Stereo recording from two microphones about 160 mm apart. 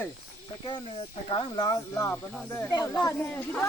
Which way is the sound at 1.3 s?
25° left (ahead or behind).